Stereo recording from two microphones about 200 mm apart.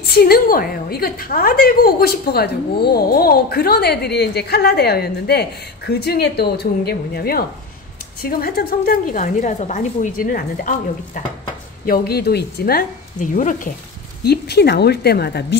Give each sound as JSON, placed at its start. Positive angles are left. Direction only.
{"t": 0.0, "sound": "a woman's voice", "side_deg": 50}
{"t": 14.2, "sound": "a woman's voice", "side_deg": 55}